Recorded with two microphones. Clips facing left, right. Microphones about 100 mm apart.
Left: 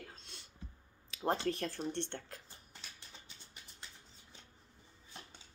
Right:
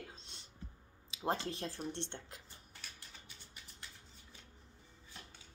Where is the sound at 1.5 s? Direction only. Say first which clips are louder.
Left 5 dB; 25° right (ahead or behind).